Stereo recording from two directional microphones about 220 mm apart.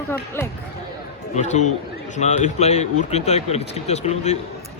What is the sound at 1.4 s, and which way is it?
A man's voice, 30° left (ahead or behind).